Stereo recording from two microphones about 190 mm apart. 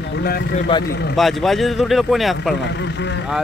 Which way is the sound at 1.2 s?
Centre (ahead or behind).